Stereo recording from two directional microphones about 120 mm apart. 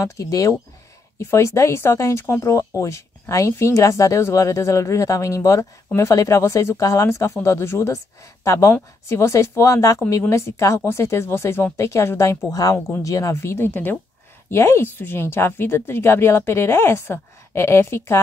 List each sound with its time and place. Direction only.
0.0 s speech: 30° left (ahead or behind)